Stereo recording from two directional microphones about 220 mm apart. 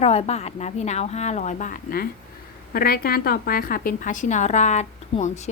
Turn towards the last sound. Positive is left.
turn(degrees=30)  # may be behind; listen again after turning